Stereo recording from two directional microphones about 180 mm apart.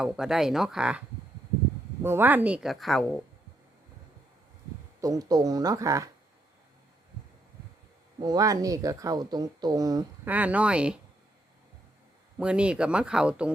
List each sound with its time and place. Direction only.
0.0 s speech: 5° right (ahead or behind)
4.9 s speech: 20° right (ahead or behind)
8.2 s speech: 20° right (ahead or behind)
10.2 s speech: 10° right (ahead or behind)
12.4 s speech: 5° right (ahead or behind)